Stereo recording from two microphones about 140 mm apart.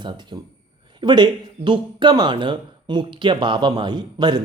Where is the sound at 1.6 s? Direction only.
35° right (ahead or behind).